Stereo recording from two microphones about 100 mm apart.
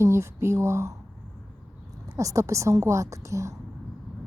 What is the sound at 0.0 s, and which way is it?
Speech, 30° right (ahead or behind).